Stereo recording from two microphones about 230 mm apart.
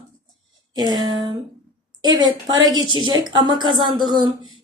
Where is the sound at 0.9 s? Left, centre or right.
Right.